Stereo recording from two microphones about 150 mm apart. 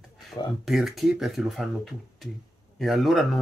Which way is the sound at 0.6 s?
Centre (ahead or behind).